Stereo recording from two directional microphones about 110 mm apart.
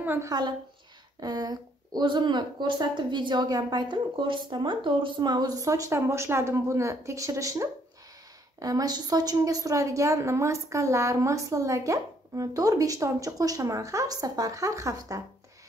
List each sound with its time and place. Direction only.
0.2 s a woman's voice: 40° right (ahead or behind)